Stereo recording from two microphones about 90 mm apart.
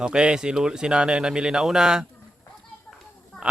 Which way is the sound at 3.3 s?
5° left (ahead or behind).